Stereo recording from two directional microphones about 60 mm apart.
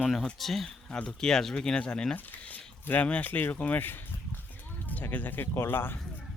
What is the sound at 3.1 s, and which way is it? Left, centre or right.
Speech, left.